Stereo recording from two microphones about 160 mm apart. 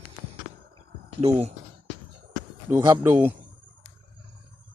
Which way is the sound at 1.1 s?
40° right (ahead or behind).